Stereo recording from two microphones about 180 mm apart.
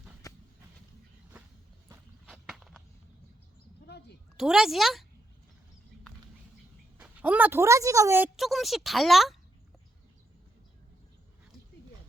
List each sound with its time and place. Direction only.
0.2 s a sound: 20° left (ahead or behind)
2.3 s walk: centre (ahead or behind)
4.4 s speech: 5° right (ahead or behind)
7.0 s speech: 10° right (ahead or behind)
8.4 s speech: centre (ahead or behind)